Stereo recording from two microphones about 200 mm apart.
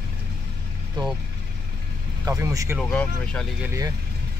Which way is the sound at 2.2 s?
15° right (ahead or behind).